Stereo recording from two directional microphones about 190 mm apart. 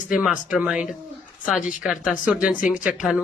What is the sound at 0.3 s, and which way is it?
Speech, 5° right (ahead or behind).